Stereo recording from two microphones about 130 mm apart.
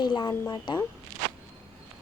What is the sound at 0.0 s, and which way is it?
Speech, 35° left (ahead or behind).